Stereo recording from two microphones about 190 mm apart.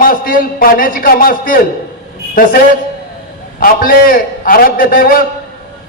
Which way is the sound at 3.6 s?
50° left (ahead or behind).